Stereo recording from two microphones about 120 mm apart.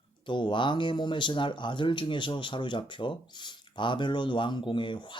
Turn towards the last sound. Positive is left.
turn(degrees=40)  # may be behind; listen again after turning